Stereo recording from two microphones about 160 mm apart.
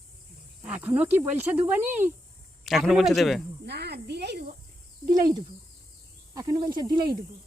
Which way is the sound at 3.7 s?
90° right.